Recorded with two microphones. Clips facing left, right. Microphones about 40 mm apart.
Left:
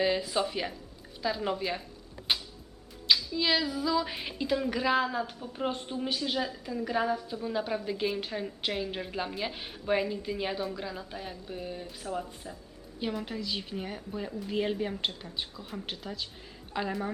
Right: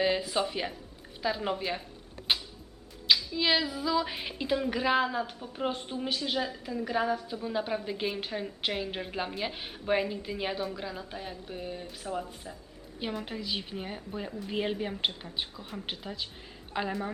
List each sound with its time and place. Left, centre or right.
0.0 s speech: centre
2.3 s music: centre
3.3 s a woman's voice: centre